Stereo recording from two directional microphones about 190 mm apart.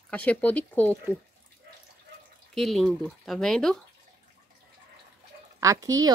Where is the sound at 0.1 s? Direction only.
10° left (ahead or behind).